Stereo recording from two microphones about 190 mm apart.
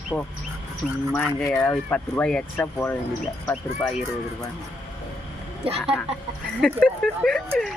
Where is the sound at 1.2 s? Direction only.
Centre (ahead or behind).